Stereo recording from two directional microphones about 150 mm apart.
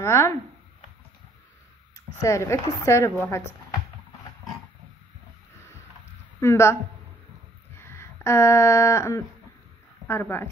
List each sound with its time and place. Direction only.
0.0 s a woman's voice: 20° left (ahead or behind)
2.2 s a woman's voice: 20° left (ahead or behind)
6.4 s a woman's voice: 20° left (ahead or behind)
7.7 s a sound: 15° left (ahead or behind)
10.0 s a woman's voice: 15° left (ahead or behind)